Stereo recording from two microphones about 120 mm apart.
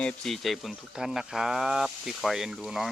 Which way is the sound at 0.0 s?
5° left (ahead or behind).